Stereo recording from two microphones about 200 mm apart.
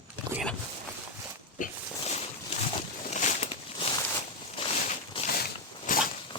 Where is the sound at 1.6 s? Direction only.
35° left (ahead or behind).